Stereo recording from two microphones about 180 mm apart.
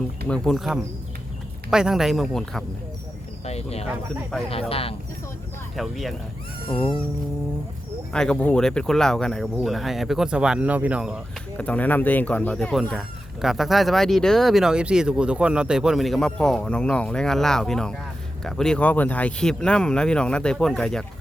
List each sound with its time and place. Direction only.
0.3 s speech: 5° left (ahead or behind)
3.4 s a sound: 35° left (ahead or behind)
4.7 s speech: 30° left (ahead or behind)
5.7 s speech: centre (ahead or behind)
8.1 s speech: 5° left (ahead or behind)
11.5 s speech: 10° left (ahead or behind)